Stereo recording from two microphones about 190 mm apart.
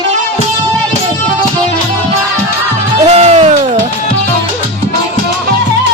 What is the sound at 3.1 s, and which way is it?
Music, 35° right (ahead or behind).